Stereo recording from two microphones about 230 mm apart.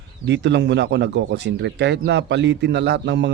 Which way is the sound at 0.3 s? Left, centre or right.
Right.